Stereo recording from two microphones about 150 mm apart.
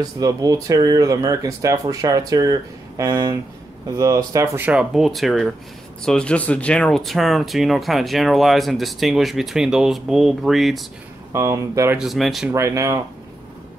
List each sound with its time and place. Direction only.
0.0 s speech: 25° right (ahead or behind); by 10.9 s centre (ahead or behind)
11.3 s speech: 20° right (ahead or behind)
12.0 s speech: centre (ahead or behind)
12.4 s speech: 20° right (ahead or behind)